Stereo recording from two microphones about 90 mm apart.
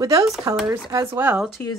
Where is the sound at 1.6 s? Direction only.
25° left (ahead or behind).